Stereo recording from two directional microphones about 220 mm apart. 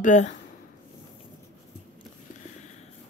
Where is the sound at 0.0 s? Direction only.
35° left (ahead or behind).